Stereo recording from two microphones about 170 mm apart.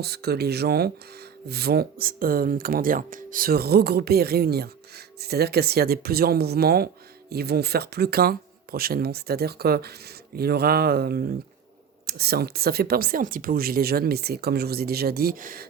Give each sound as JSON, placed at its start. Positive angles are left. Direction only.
{"t": 0.0, "sound": "speech", "side_deg": -70}